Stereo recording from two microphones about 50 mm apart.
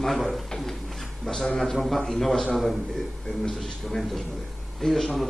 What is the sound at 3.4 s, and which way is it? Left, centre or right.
Speech, centre.